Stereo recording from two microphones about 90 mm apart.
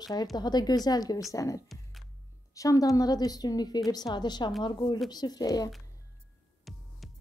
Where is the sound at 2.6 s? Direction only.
40° left (ahead or behind).